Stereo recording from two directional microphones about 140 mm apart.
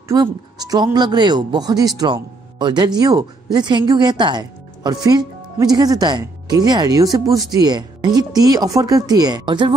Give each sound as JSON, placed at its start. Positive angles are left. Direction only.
{"t": 0.1, "sound": "a man's voice", "side_deg": -30}